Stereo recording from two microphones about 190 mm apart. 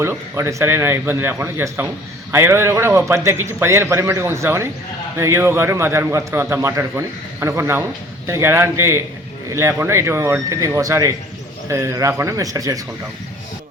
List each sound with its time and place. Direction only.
0.0 s a man's voice: 15° right (ahead or behind)